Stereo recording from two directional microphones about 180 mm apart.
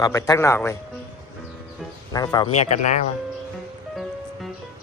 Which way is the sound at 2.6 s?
40° left (ahead or behind).